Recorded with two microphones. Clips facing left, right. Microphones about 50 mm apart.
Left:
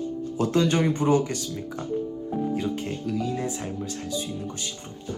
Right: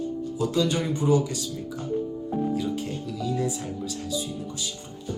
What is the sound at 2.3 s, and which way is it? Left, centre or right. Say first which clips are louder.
Music: right 1 dB; centre.